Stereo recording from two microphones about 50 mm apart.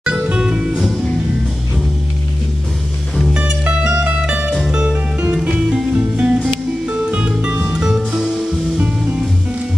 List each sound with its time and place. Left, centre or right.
0.0 s music: centre
3.3 s music: centre